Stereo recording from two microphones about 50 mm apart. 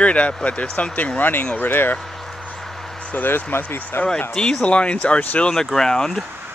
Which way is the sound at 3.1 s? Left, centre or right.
Left.